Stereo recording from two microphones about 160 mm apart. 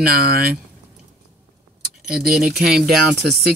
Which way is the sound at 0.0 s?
75° right (ahead or behind).